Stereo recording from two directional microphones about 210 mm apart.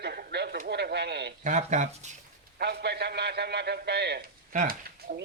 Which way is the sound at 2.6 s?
50° right (ahead or behind).